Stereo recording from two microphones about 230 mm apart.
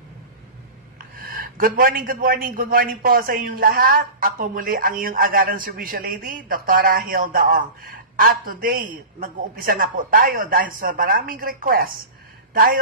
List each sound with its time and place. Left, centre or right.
0.9 s a man's voice: right